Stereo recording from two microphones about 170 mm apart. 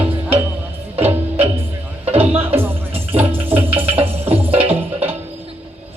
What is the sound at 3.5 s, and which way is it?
Music, 35° right (ahead or behind).